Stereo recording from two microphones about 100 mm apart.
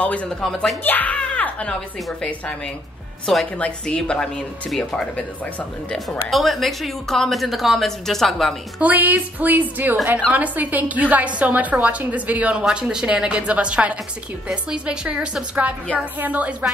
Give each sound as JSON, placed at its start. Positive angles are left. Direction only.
{"t": 0.0, "sound": "speech", "side_deg": 15}
{"t": 0.4, "sound": "a woman's voice", "side_deg": 0}
{"t": 0.8, "sound": "a woman's voice", "side_deg": 15}
{"t": 8.8, "sound": "a woman's voice", "side_deg": -20}